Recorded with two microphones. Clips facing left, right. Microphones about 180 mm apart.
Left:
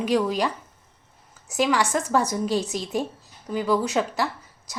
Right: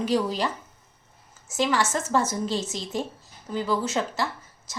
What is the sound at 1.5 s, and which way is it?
A woman's voice, 15° left (ahead or behind).